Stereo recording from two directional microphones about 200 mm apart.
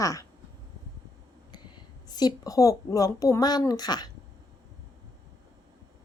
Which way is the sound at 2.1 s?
20° left (ahead or behind).